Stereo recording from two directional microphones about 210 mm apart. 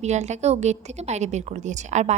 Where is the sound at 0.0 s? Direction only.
35° right (ahead or behind).